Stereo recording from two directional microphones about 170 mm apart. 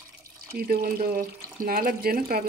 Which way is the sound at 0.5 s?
65° right (ahead or behind).